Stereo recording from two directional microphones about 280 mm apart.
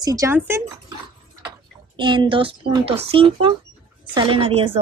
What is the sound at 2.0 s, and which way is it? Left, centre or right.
A woman's voice, centre.